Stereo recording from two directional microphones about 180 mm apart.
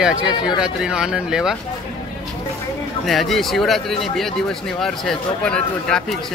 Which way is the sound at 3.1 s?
Centre (ahead or behind).